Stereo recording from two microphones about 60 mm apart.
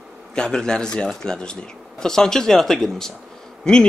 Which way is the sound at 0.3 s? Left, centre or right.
Centre.